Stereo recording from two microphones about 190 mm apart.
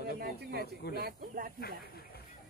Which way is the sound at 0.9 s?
50° right (ahead or behind).